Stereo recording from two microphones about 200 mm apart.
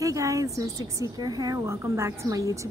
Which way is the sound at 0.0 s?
15° right (ahead or behind).